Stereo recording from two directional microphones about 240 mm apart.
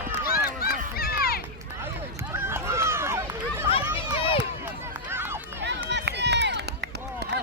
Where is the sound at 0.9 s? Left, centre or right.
Left.